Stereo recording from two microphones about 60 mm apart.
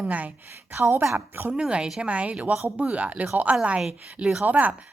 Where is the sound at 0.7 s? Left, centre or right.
Right.